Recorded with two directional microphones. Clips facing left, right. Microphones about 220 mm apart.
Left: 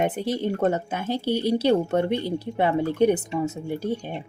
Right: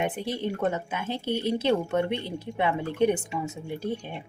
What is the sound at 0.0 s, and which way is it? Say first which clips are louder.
Speech: left 4 dB; 40° left (ahead or behind).